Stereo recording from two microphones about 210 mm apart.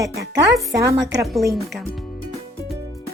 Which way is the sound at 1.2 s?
Centre (ahead or behind).